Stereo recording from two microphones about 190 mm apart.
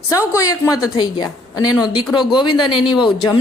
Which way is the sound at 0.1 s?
15° left (ahead or behind).